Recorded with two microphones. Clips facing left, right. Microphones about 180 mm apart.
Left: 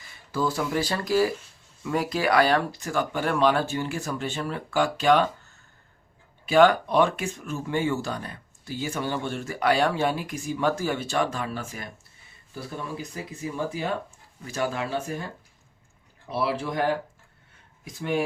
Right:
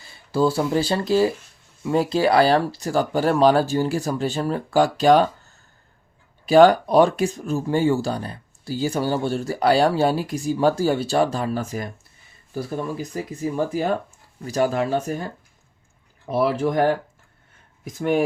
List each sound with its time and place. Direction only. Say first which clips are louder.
0.0 s speech: right 7 dB; 30° right (ahead or behind)
6.4 s speech: right 5 dB; 35° right (ahead or behind)
16.2 s speech: right 7 dB; 45° right (ahead or behind)
17.9 s speech: right 6 dB; 45° right (ahead or behind)